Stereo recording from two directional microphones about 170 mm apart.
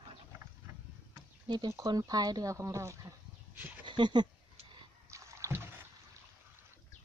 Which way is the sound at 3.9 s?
25° right (ahead or behind).